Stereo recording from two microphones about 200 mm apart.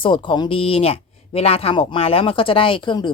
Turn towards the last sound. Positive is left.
turn(degrees=25)  # may be behind; listen again after turning